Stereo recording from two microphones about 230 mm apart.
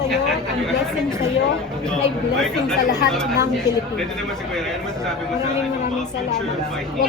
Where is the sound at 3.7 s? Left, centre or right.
Centre.